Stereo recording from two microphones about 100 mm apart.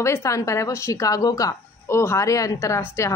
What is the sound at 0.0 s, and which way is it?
Speech, 30° left (ahead or behind).